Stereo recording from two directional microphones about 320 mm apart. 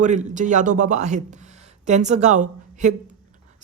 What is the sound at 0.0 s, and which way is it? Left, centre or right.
Speech, right.